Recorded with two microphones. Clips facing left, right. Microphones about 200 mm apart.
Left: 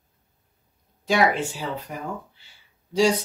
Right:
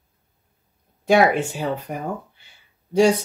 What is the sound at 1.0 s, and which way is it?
Speech, 55° right (ahead or behind).